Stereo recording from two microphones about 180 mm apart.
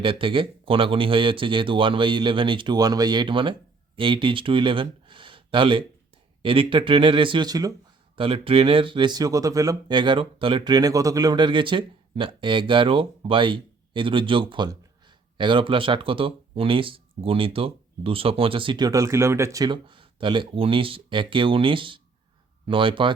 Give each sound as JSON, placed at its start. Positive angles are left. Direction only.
{"t": 0.0, "sound": "speech", "side_deg": -30}